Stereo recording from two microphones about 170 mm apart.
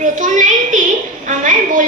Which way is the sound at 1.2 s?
50° right (ahead or behind).